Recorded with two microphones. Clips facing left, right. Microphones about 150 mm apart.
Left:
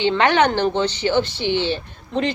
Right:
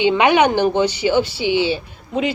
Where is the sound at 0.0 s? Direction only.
10° right (ahead or behind).